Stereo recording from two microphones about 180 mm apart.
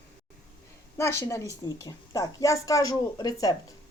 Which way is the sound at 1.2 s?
20° left (ahead or behind).